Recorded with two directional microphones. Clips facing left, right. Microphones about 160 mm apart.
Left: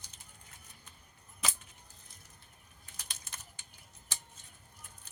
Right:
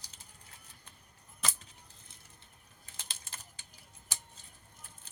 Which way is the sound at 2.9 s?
30° right (ahead or behind).